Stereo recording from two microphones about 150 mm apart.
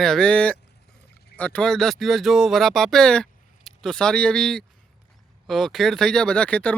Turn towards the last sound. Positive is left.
turn(degrees=10)  # may be behind; listen again after turning